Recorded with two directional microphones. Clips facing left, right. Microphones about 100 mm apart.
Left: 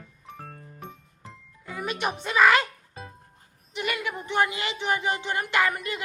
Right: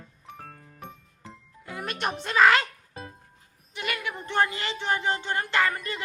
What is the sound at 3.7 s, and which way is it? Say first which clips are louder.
Speech: left 2 dB; 5° left (ahead or behind).